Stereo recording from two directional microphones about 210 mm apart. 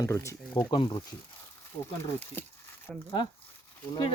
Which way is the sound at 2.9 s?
Centre (ahead or behind).